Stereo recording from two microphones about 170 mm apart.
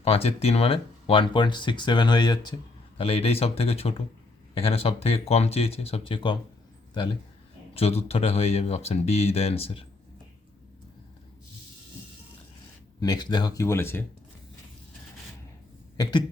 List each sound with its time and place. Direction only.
0.0 s speech: 35° left (ahead or behind)
13.0 s speech: 25° left (ahead or behind)